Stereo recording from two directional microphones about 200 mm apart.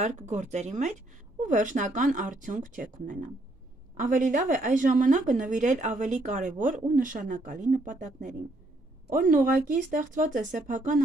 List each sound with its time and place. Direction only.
0.0 s a woman's voice: 35° right (ahead or behind)
3.9 s a woman's voice: 40° right (ahead or behind)